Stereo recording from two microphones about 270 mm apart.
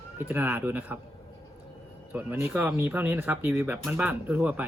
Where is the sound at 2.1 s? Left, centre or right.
Centre.